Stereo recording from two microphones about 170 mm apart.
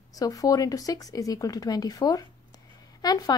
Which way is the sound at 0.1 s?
20° left (ahead or behind).